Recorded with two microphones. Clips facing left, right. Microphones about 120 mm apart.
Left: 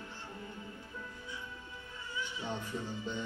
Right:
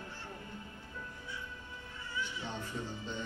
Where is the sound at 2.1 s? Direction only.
15° left (ahead or behind).